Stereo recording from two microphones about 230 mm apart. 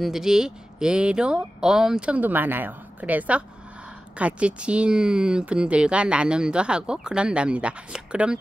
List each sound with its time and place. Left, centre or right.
0.0 s speech: centre